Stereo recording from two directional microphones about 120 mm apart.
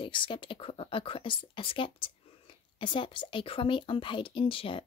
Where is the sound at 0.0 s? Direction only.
45° left (ahead or behind).